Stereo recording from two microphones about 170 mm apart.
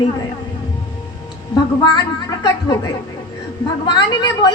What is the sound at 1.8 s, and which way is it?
A woman's voice, 25° left (ahead or behind).